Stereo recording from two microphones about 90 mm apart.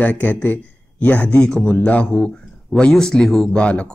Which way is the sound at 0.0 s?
20° left (ahead or behind).